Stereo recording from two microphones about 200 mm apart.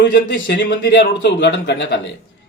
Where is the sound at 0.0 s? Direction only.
60° left (ahead or behind).